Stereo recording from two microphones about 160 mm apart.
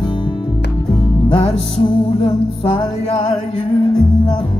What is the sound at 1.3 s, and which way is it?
Music, 35° left (ahead or behind).